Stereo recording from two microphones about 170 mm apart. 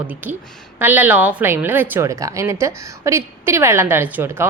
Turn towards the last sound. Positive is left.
turn(degrees=-10)  # may be behind; listen again after turning